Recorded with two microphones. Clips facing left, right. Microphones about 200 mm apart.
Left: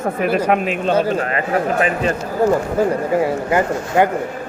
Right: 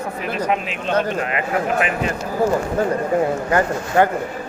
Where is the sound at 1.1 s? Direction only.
35° left (ahead or behind).